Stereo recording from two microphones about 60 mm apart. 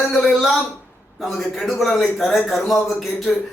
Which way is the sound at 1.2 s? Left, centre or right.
Centre.